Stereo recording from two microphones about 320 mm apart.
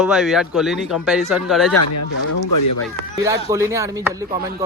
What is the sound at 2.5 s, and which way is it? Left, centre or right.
Speech, left.